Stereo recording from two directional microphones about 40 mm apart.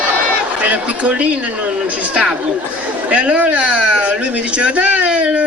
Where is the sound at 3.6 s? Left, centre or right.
Right.